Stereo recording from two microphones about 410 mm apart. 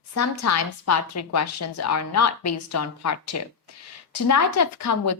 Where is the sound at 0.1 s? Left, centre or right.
Left.